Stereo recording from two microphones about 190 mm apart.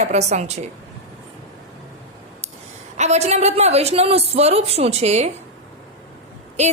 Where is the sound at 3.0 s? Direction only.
35° right (ahead or behind).